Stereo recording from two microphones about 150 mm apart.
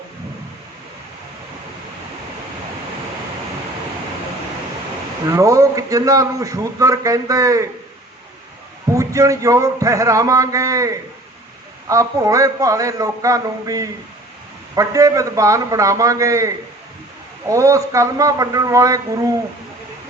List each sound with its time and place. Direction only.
5.2 s a man's voice: 20° right (ahead or behind)
8.9 s a man's voice: 20° right (ahead or behind)
17.5 s a man's voice: 20° right (ahead or behind)